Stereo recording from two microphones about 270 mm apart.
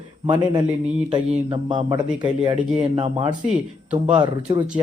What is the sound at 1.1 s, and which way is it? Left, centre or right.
Speech, centre.